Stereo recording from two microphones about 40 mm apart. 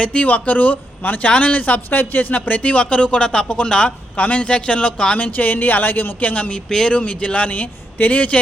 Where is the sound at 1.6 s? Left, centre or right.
Left.